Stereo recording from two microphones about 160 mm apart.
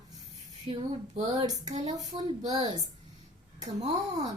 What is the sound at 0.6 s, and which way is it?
Speech, 35° right (ahead or behind).